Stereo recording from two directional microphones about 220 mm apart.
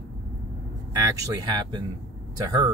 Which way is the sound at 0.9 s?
15° right (ahead or behind).